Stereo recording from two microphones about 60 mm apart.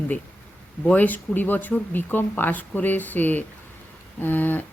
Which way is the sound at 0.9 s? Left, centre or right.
Left.